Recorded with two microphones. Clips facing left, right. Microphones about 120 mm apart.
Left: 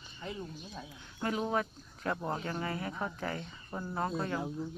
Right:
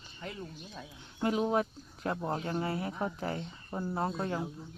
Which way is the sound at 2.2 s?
10° right (ahead or behind).